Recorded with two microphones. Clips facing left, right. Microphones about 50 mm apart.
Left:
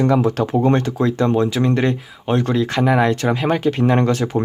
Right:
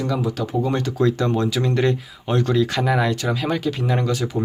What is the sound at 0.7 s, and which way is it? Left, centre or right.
Speech, left.